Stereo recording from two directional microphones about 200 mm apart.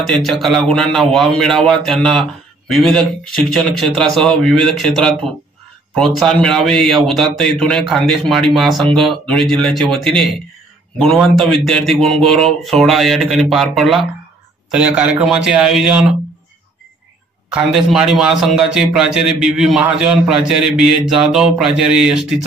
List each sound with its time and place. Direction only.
0.0 s a man's voice: centre (ahead or behind)
6.1 s a man's voice: centre (ahead or behind)
17.5 s a man's voice: centre (ahead or behind)